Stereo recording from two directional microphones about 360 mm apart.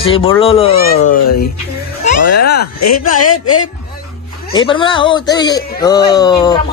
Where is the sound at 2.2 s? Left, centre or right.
Left.